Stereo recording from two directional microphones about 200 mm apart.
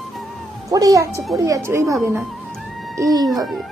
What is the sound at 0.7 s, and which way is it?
Speech, 15° right (ahead or behind).